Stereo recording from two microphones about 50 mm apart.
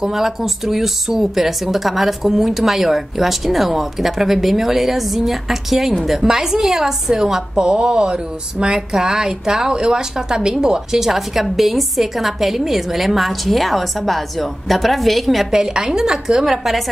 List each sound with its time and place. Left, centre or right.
0.0 s a woman's voice: centre